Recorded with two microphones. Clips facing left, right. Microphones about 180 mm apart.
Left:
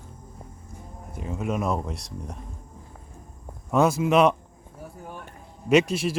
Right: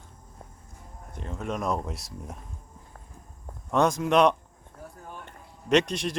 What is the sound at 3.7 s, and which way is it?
Speech, 5° left (ahead or behind).